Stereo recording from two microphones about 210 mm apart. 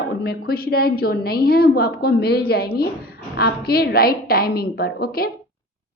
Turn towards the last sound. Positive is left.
turn(degrees=45)  # may be behind; listen again after turning